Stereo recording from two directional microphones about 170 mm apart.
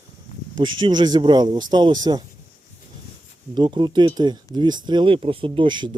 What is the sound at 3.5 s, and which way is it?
Speech, 25° right (ahead or behind).